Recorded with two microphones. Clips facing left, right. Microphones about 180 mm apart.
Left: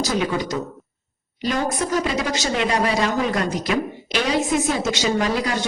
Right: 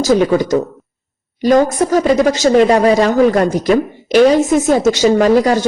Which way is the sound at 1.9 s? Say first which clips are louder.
Right 10 dB; 45° right (ahead or behind).